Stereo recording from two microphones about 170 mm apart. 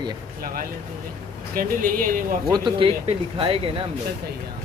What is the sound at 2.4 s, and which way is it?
Speech, 25° right (ahead or behind).